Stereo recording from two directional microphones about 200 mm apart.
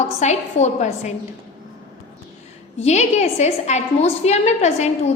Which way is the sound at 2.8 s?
35° left (ahead or behind).